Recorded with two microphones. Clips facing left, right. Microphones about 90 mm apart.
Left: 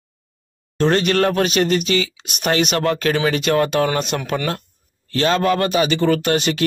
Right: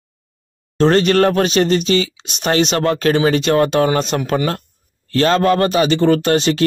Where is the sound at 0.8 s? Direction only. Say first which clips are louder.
Right 4 dB; 35° right (ahead or behind).